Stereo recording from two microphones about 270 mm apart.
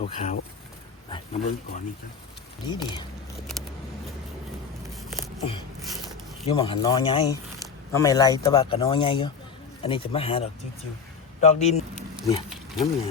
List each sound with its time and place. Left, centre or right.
0.0 s speech: left
3.5 s a sound: centre
5.4 s speech: centre
12.8 s speech: centre